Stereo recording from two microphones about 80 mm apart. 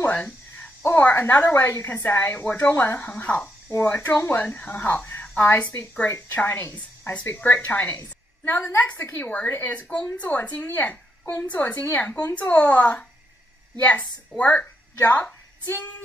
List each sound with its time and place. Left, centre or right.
0.0 s a sound: left
0.8 s a woman's voice: left
8.0 s a woman's voice: left; by 13.0 s centre
14.3 s speech: centre